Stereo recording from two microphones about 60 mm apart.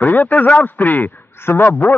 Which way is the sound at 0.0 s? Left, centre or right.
Left.